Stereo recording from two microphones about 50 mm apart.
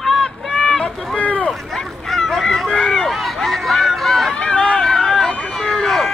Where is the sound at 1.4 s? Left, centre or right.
Centre.